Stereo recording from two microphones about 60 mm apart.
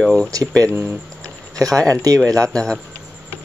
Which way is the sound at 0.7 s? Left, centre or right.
Right.